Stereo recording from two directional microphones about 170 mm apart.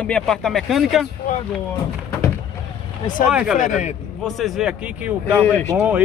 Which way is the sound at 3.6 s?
45° left (ahead or behind).